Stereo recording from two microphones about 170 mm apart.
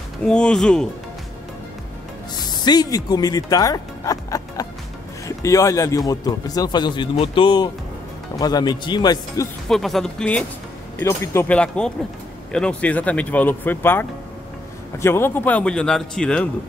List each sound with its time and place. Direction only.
0.2 s speech: 5° left (ahead or behind)
2.4 s speech: 25° left (ahead or behind)
9.7 s speech: centre (ahead or behind)